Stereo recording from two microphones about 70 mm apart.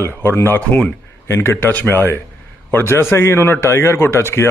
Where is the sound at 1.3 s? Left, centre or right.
Left.